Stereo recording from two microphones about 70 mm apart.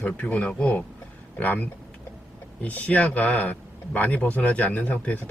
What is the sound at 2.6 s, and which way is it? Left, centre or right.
Speech, left.